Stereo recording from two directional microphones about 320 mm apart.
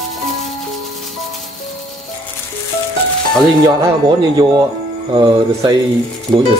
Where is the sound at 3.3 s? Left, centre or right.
Centre.